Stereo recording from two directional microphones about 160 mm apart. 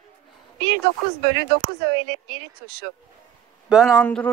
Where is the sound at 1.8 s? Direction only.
85° right.